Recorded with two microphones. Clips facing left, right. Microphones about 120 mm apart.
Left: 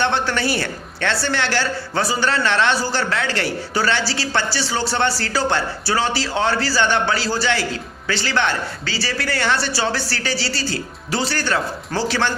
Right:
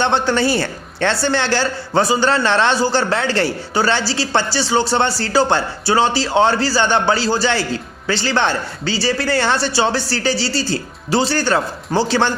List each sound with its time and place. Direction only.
0.0 s a man's voice: 30° right (ahead or behind)